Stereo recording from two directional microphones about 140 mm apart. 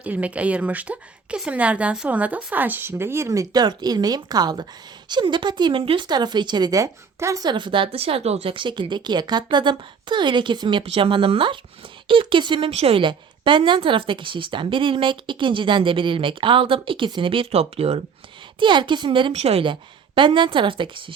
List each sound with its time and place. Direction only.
0.0 s a woman's voice: 10° right (ahead or behind); by 18.0 s 45° right (ahead or behind)
18.6 s speech: 35° right (ahead or behind)
19.3 s a woman's voice: 50° right (ahead or behind)